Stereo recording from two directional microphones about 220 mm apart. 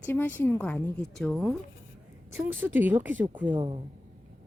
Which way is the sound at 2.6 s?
10° right (ahead or behind).